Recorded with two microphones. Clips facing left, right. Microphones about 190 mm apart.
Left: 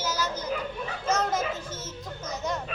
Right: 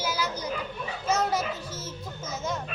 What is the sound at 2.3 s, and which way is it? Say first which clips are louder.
Hubbub: left 1 dB; centre (ahead or behind).